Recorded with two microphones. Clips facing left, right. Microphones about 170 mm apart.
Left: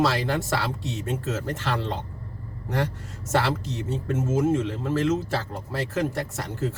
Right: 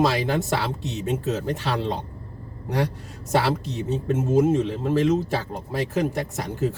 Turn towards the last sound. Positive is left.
turn(degrees=-15)  # may be behind; listen again after turning